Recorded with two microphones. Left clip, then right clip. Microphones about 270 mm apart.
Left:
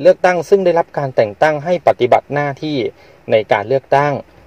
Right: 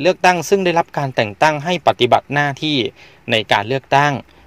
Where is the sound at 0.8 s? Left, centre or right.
Right.